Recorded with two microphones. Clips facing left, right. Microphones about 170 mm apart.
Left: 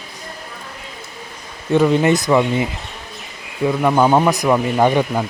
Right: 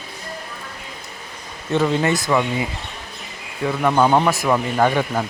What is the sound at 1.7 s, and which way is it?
Speech, 15° left (ahead or behind).